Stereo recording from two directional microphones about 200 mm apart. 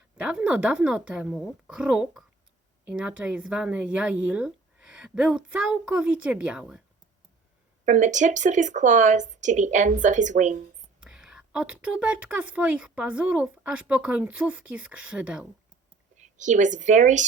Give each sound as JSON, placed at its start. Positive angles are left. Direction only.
{"t": 0.2, "sound": "a woman's voice", "side_deg": -5}
{"t": 7.9, "sound": "speech", "side_deg": -35}
{"t": 11.0, "sound": "a woman's voice", "side_deg": -5}
{"t": 16.1, "sound": "speech", "side_deg": -35}